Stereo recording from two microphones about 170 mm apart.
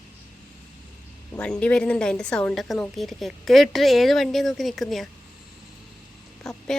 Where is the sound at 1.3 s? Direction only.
5° left (ahead or behind).